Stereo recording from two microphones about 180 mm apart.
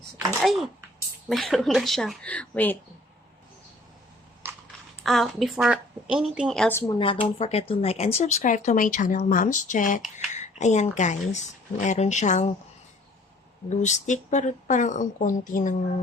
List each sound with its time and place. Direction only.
0.4 s a woman's voice: centre (ahead or behind)
5.0 s a woman's voice: centre (ahead or behind)
6.7 s a woman's voice: 15° left (ahead or behind)
7.2 s speech: 35° left (ahead or behind)
13.7 s speech: 40° left (ahead or behind)